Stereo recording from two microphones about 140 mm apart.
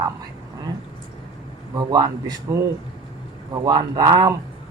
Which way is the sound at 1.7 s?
30° right (ahead or behind).